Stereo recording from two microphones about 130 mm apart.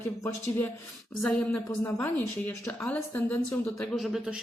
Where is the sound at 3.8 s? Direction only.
Centre (ahead or behind).